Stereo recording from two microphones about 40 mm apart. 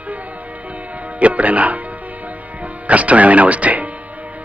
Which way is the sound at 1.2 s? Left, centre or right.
Right.